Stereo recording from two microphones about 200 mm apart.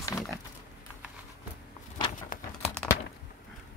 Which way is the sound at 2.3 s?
45° left (ahead or behind).